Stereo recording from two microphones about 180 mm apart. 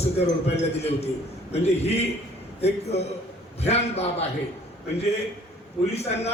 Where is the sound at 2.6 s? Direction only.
35° left (ahead or behind).